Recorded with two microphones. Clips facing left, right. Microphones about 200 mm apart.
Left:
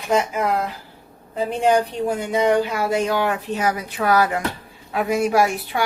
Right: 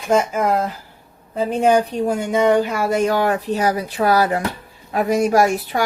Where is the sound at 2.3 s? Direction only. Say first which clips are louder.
Right 2 dB; 45° right (ahead or behind).